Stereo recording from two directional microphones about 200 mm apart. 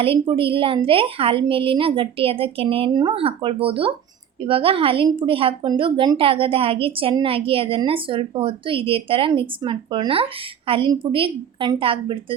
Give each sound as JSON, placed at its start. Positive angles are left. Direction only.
{"t": 0.0, "sound": "a woman's voice", "side_deg": -25}